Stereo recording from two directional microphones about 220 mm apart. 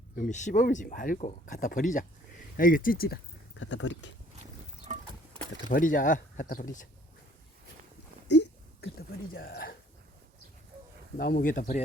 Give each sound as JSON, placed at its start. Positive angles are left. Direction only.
{"t": 0.2, "sound": "speech", "side_deg": 35}
{"t": 3.6, "sound": "speech", "side_deg": 55}
{"t": 4.9, "sound": "horse", "side_deg": -25}
{"t": 5.6, "sound": "speech", "side_deg": 35}
{"t": 8.3, "sound": "a sound", "side_deg": 50}
{"t": 11.2, "sound": "speech", "side_deg": 45}